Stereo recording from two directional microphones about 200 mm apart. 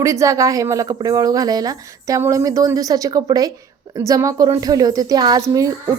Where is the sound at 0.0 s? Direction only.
15° right (ahead or behind).